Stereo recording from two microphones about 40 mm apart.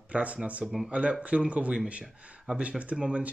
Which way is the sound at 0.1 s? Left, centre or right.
Right.